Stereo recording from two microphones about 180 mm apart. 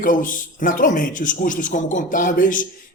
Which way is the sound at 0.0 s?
50° left (ahead or behind).